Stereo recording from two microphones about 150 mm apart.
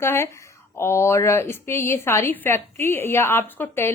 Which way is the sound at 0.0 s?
15° left (ahead or behind).